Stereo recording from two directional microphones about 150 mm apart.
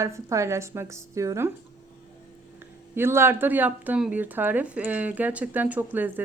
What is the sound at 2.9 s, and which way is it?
Speech, 15° right (ahead or behind).